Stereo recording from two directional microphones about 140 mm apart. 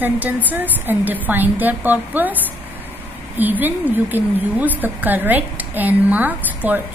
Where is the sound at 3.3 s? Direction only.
15° right (ahead or behind).